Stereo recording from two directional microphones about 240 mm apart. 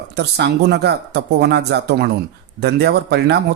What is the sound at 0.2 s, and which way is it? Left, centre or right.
Speech, right.